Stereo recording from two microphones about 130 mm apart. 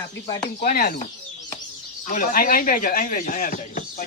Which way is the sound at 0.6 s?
90° left.